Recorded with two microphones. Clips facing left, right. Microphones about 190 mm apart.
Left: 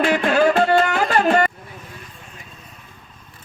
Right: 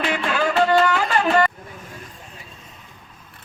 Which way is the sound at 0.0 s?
45° left (ahead or behind).